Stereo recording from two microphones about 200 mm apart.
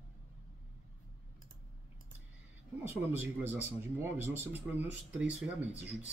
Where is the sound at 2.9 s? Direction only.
10° right (ahead or behind).